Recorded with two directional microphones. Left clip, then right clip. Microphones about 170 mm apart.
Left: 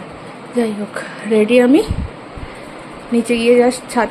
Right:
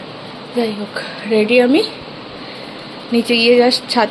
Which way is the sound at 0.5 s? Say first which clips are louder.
Even; 25° left (ahead or behind).